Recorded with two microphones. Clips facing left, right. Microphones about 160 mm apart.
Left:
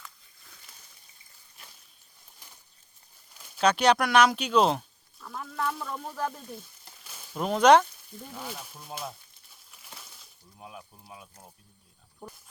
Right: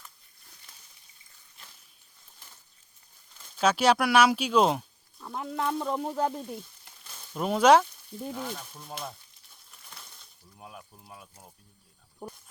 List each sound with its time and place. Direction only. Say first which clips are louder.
3.6 s speech: even; 5° right (ahead or behind)
5.2 s speech: right 2 dB; 25° right (ahead or behind)
7.3 s speech: left 1 dB; 5° right (ahead or behind)
9.7 s a sound: left 1 dB; 5° left (ahead or behind)